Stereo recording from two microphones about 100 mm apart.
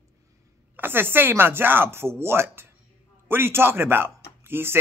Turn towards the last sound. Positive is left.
turn(degrees=-25)  # may be behind; listen again after turning